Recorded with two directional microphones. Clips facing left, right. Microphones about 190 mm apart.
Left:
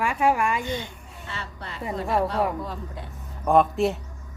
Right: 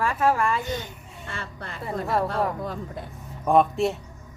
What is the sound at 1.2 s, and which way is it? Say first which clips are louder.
Speech: right 1 dB; 50° right (ahead or behind).